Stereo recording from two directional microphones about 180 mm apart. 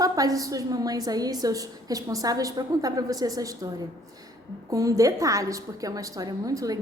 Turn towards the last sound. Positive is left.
turn(degrees=-20)  # may be behind; listen again after turning